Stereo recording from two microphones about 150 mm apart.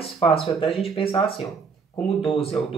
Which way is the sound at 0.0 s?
40° left (ahead or behind).